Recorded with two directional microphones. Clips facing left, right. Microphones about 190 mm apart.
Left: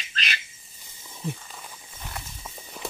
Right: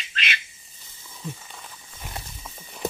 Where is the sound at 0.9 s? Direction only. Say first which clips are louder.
Left 3 dB; 15° left (ahead or behind).